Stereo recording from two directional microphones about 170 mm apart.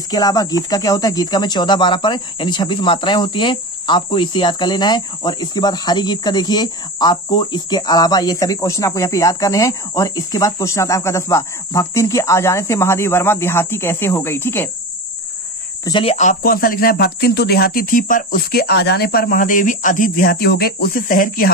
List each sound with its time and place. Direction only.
0.1 s speech: 20° left (ahead or behind)
15.8 s speech: 30° left (ahead or behind)
16.2 s speech: 55° left (ahead or behind)